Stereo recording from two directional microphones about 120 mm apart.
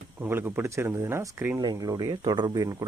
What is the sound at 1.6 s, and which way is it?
Speech, 35° right (ahead or behind).